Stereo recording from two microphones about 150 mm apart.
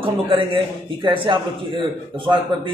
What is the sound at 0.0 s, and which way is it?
A man's voice, 35° right (ahead or behind).